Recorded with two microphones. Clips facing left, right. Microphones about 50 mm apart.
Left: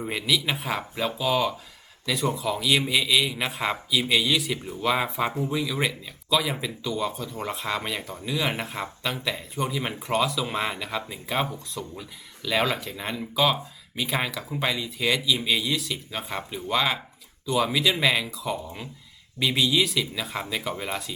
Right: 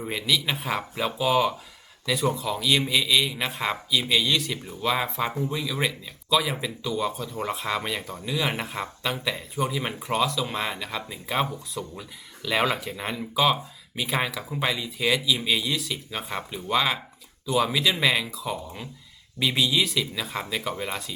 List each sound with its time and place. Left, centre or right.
0.0 s speech: centre